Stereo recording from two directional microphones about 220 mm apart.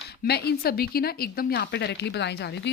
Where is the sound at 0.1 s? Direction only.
45° left (ahead or behind).